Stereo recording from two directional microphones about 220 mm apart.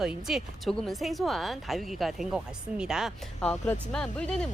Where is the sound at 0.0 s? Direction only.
Centre (ahead or behind).